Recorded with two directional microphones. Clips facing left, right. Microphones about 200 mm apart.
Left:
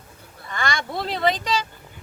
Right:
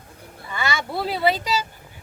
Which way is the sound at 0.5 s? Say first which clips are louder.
Right 1 dB; 5° right (ahead or behind).